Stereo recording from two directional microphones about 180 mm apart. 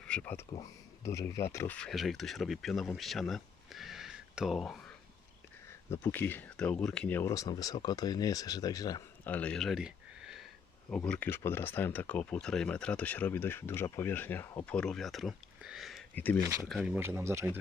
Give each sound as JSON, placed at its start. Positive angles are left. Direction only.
{"t": 0.0, "sound": "speech", "side_deg": 5}
{"t": 5.9, "sound": "speech", "side_deg": 15}
{"t": 9.2, "sound": "a sound", "side_deg": 10}
{"t": 10.8, "sound": "speech", "side_deg": 5}
{"t": 16.1, "sound": "speech", "side_deg": 10}
{"t": 16.4, "sound": "speech", "side_deg": -15}
{"t": 16.6, "sound": "speech", "side_deg": 0}